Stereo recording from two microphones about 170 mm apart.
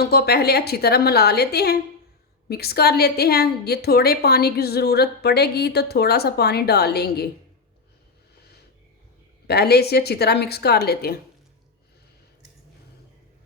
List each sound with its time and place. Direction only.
0.0 s a woman's voice: 70° left (ahead or behind)
9.5 s a woman's voice: 70° left (ahead or behind)